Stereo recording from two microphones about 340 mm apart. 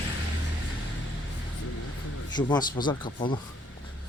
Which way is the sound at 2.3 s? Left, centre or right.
Centre.